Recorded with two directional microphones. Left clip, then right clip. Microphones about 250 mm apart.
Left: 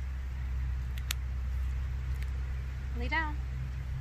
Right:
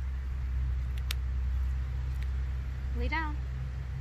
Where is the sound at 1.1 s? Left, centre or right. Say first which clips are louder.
Left 1 dB; centre.